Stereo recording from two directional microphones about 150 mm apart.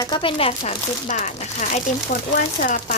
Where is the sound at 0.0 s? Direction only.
35° left (ahead or behind).